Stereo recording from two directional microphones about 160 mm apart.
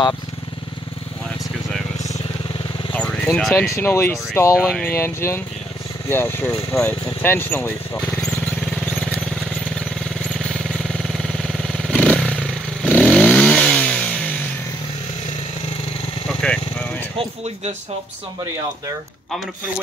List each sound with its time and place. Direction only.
2.9 s speech: 5° left (ahead or behind)
3.7 s speech: 15° left (ahead or behind)
4.6 s speech: 5° left (ahead or behind)
4.9 s speech: 15° left (ahead or behind)
10.4 s vehicle: 5° left (ahead or behind)
16.3 s vehicle: 5° left (ahead or behind)